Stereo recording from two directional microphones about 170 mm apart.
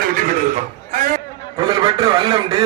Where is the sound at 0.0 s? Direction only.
55° right (ahead or behind).